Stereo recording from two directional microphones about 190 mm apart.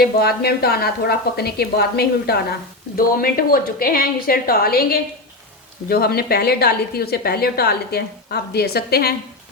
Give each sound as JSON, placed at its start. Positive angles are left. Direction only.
{"t": 0.0, "sound": "a woman's voice", "side_deg": 55}